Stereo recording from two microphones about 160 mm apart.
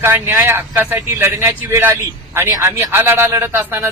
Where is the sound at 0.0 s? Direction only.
15° right (ahead or behind).